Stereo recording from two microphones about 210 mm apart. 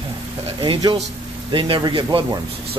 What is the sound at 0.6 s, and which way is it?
Speech, 20° right (ahead or behind).